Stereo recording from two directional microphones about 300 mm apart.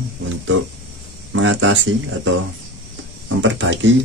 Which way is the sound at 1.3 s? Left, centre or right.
Right.